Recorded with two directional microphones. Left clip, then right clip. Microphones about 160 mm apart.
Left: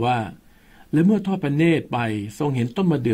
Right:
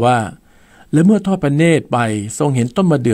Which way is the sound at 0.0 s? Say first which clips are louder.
Right 8 dB; 60° right (ahead or behind).